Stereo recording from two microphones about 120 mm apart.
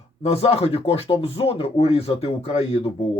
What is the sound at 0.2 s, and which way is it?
Speech, 60° left (ahead or behind).